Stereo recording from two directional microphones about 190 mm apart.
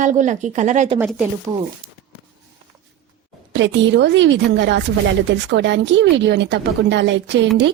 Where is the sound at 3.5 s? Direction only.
70° right (ahead or behind).